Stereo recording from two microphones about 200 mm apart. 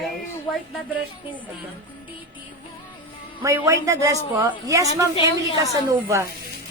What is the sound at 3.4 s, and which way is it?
Speech, 10° right (ahead or behind).